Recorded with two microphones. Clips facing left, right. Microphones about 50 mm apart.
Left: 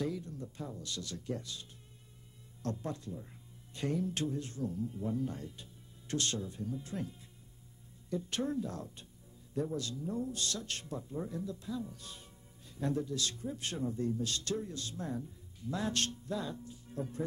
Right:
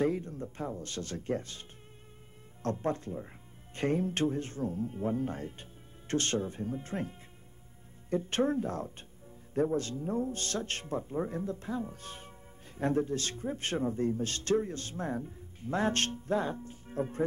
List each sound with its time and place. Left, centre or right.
0.0 s speech: right